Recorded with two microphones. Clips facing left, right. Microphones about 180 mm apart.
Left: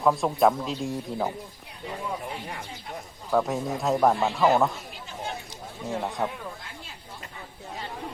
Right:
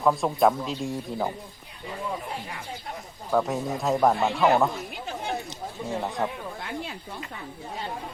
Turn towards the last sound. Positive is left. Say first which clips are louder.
# right 10 dB
turn(degrees=-65)  # may be behind; listen again after turning